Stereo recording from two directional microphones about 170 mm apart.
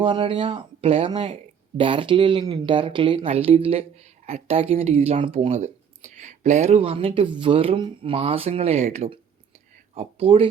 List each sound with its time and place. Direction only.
0.0 s speech: 30° right (ahead or behind)
5.5 s speech: 45° right (ahead or behind)